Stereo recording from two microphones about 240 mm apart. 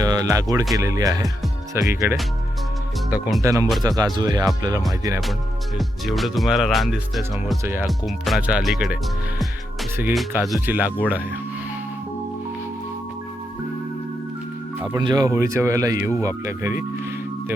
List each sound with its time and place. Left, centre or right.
0.0 s speech: centre
3.1 s speech: centre
3.4 s speech: centre
5.7 s speech: centre
10.2 s speech: centre
14.8 s speech: centre